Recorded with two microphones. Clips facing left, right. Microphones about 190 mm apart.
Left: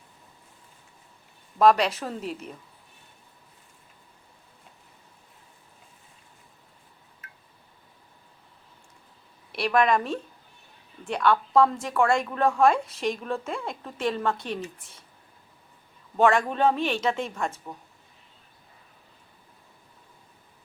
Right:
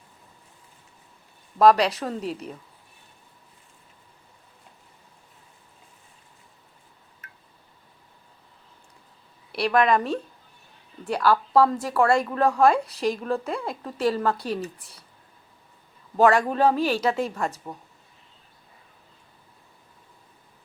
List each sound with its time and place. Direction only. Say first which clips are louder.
1.8 s speech: right 3 dB; centre (ahead or behind)
9.5 s speech: right 2 dB; centre (ahead or behind)
14.6 s speech: right 3 dB; 35° right (ahead or behind)
16.1 s speech: right 2 dB; 5° right (ahead or behind)